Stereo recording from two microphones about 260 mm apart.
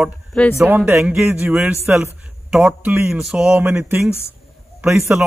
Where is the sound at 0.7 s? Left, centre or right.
Centre.